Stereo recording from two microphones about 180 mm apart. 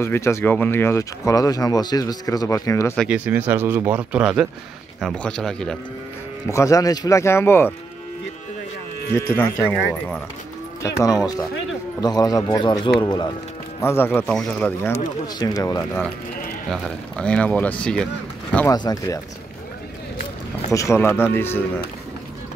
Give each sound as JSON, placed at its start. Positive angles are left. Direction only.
{"t": 0.0, "sound": "speech", "side_deg": 15}
{"t": 3.0, "sound": "speech", "side_deg": -10}
{"t": 6.5, "sound": "speech", "side_deg": 15}
{"t": 9.1, "sound": "speech", "side_deg": 10}
{"t": 10.8, "sound": "speech", "side_deg": 15}
{"t": 13.7, "sound": "speech", "side_deg": 15}
{"t": 14.9, "sound": "speech", "side_deg": 20}
{"t": 16.7, "sound": "speech", "side_deg": 5}
{"t": 18.7, "sound": "speech", "side_deg": 20}
{"t": 20.7, "sound": "speech", "side_deg": 15}